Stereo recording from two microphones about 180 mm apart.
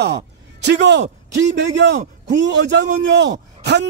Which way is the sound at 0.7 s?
75° right (ahead or behind).